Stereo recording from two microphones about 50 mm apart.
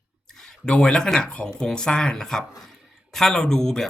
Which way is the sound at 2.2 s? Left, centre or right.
Centre.